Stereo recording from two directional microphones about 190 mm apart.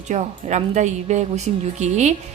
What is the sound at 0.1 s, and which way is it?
A woman's voice, 40° right (ahead or behind).